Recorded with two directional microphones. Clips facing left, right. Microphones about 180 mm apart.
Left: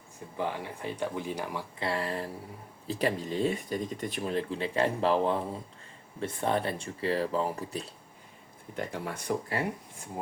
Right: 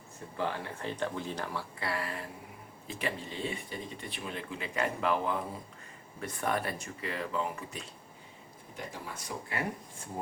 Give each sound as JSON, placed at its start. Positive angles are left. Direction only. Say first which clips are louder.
{"t": 0.3, "sound": "speech", "louder": "left 1 dB", "side_deg": 15}
{"t": 1.8, "sound": "speech", "louder": "left 6 dB", "side_deg": 25}
{"t": 8.7, "sound": "speech", "louder": "left 7 dB", "side_deg": 60}